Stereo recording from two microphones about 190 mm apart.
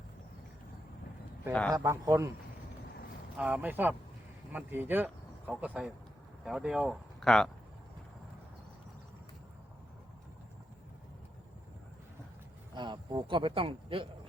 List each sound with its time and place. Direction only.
1.7 s a man's voice: 15° right (ahead or behind)
3.3 s a man's voice: 10° right (ahead or behind)
12.7 s a man's voice: 25° right (ahead or behind)